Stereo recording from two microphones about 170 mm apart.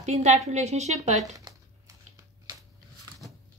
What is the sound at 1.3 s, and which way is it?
Crumpling, 20° right (ahead or behind).